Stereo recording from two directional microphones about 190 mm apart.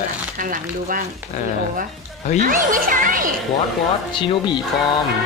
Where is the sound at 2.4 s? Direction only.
45° right (ahead or behind).